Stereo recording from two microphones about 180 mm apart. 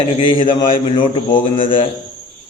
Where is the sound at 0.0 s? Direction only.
25° left (ahead or behind).